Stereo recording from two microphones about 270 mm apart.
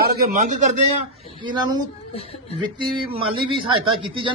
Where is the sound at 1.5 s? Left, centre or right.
Centre.